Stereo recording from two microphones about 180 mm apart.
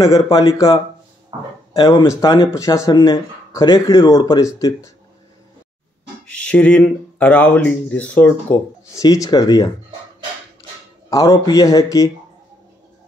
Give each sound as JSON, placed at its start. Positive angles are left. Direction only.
{"t": 0.0, "sound": "speech", "side_deg": 20}
{"t": 1.3, "sound": "speech", "side_deg": -30}
{"t": 1.8, "sound": "speech", "side_deg": 20}
{"t": 6.2, "sound": "speech", "side_deg": 5}
{"t": 9.0, "sound": "speech", "side_deg": 20}
{"t": 11.1, "sound": "speech", "side_deg": 20}